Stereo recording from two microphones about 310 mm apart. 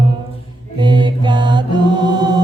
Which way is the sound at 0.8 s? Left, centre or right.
Centre.